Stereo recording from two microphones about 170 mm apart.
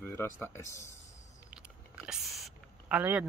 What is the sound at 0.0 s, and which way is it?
Speech, 15° left (ahead or behind).